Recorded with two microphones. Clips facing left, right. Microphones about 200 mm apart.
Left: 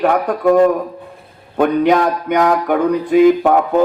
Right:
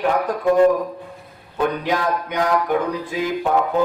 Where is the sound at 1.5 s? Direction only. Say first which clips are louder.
Left 8 dB; 60° left (ahead or behind).